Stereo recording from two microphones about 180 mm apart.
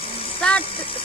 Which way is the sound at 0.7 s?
30° left (ahead or behind).